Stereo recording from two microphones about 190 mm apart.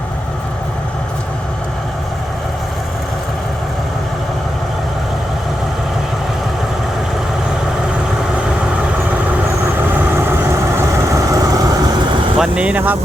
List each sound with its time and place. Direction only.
10.8 s vehicle: 15° right (ahead or behind)
12.4 s speech: 5° right (ahead or behind)